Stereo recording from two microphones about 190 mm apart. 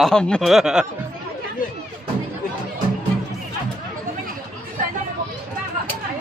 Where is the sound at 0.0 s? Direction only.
5° left (ahead or behind).